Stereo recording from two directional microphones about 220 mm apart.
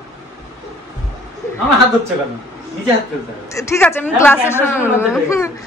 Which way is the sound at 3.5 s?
15° left (ahead or behind).